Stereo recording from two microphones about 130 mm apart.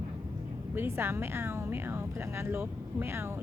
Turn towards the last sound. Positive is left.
turn(degrees=-15)  # may be behind; listen again after turning